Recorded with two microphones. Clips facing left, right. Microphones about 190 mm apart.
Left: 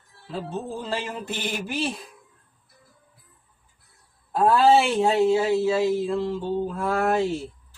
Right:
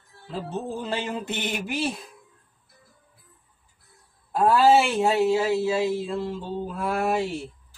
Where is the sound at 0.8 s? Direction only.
20° right (ahead or behind).